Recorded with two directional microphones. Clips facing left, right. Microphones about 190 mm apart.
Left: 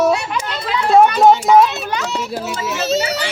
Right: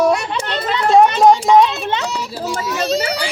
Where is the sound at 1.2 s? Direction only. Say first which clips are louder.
Even; centre (ahead or behind).